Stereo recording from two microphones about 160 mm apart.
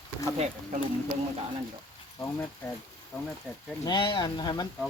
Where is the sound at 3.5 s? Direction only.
5° left (ahead or behind).